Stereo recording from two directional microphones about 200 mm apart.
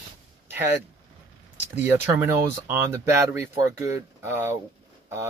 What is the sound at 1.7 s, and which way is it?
Speech, 10° right (ahead or behind).